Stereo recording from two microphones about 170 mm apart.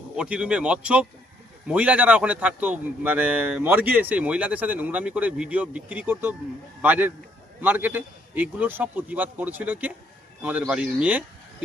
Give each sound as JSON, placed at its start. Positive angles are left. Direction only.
{"t": 0.2, "sound": "a man's voice", "side_deg": -5}